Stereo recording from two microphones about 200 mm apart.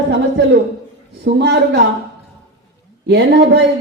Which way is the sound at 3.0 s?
55° right (ahead or behind).